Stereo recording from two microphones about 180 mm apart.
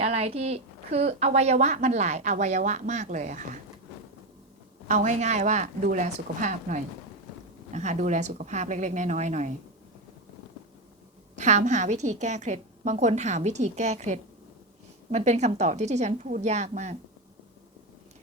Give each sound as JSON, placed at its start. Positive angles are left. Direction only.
{"t": 0.0, "sound": "a woman's voice", "side_deg": -35}
{"t": 4.9, "sound": "a woman's voice", "side_deg": -40}
{"t": 11.3, "sound": "a woman's voice", "side_deg": -40}